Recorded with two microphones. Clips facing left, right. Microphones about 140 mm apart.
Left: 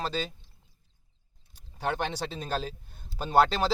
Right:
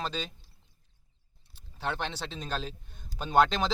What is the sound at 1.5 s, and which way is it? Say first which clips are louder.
Speech: left 3 dB; 10° left (ahead or behind).